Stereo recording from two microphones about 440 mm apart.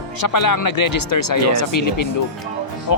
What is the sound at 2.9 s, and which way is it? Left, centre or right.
Speech, left.